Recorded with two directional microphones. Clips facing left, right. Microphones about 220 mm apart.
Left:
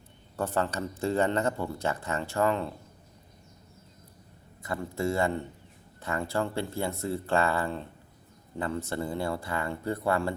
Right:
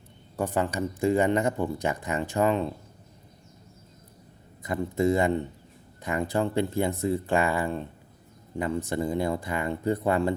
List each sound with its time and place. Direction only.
0.3 s speech: 15° right (ahead or behind)
4.6 s speech: 20° right (ahead or behind)